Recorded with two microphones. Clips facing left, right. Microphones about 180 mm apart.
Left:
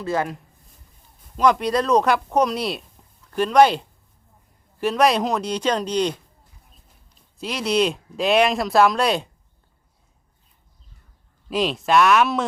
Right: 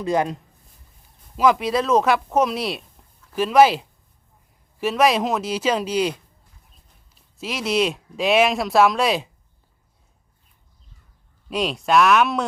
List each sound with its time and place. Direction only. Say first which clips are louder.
0.0 s speech: right 3 dB; 15° right (ahead or behind)
1.4 s speech: even; 5° right (ahead or behind)
7.3 s speech: left 1 dB; centre (ahead or behind)
11.4 s speech: left 1 dB; centre (ahead or behind)